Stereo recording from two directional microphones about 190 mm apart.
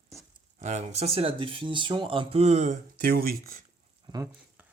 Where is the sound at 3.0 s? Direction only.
50° right (ahead or behind).